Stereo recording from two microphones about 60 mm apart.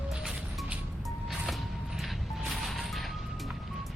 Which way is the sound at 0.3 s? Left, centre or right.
Centre.